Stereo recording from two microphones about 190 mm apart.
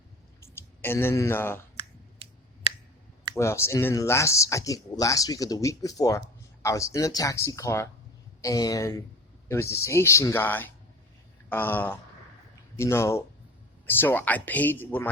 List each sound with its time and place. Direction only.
0.3 s a sound: 15° left (ahead or behind)
1.7 s finger snapping: 35° right (ahead or behind)
3.3 s speech: 15° left (ahead or behind)